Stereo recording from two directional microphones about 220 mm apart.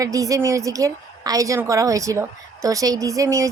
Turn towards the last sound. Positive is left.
turn(degrees=-15)  # may be behind; listen again after turning